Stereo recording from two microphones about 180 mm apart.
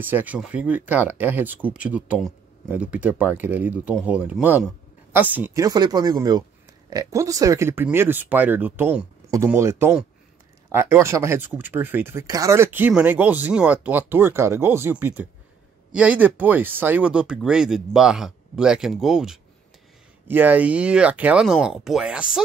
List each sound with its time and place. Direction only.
0.0 s speech: 10° right (ahead or behind)